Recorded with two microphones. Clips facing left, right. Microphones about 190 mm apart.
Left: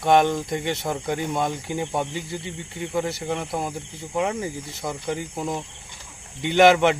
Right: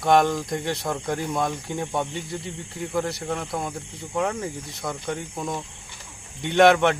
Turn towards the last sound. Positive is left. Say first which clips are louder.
# left 1 dB
turn(degrees=0)  # may be behind; listen again after turning